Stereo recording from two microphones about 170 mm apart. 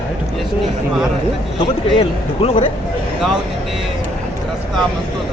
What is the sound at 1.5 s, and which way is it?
A man's voice, 35° left (ahead or behind).